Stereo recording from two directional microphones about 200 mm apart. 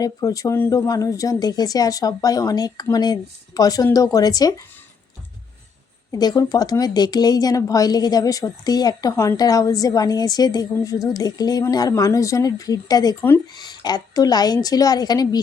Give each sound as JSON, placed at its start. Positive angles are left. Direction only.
{"t": 0.0, "sound": "speech", "side_deg": 15}
{"t": 6.1, "sound": "speech", "side_deg": 20}